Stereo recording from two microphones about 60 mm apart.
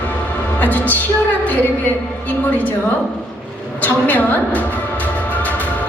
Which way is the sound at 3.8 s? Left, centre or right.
Left.